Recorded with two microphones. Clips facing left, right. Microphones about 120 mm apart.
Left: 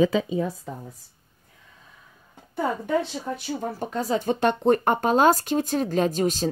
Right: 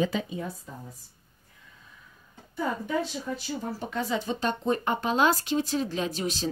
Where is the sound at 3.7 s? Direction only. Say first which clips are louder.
Left 4 dB; 45° left (ahead or behind).